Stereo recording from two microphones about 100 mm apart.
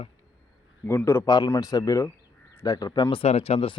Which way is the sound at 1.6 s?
35° left (ahead or behind).